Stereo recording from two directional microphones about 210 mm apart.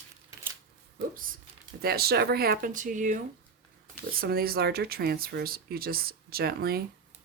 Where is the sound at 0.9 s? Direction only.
40° right (ahead or behind).